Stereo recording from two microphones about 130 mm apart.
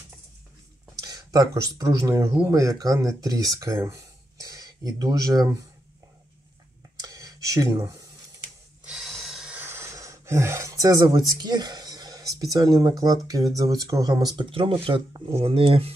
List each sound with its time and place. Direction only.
1.0 s speech: 30° right (ahead or behind)
7.0 s a sound: 30° right (ahead or behind)
8.8 s snort: 5° right (ahead or behind)
9.6 s speech: 20° right (ahead or behind); by 15.9 s 45° right (ahead or behind)